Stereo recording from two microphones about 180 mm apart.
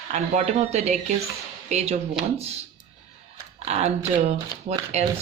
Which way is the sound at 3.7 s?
40° right (ahead or behind).